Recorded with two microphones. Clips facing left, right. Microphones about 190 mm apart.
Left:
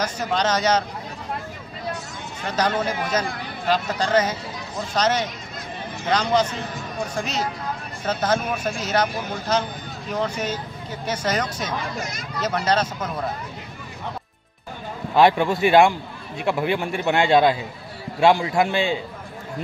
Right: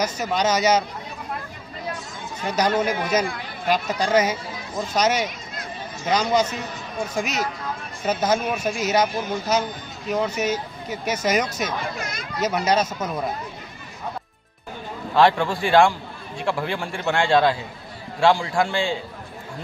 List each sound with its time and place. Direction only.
0.0 s speech: 10° right (ahead or behind)
2.4 s speech: 10° right (ahead or behind)
15.1 s speech: 20° left (ahead or behind)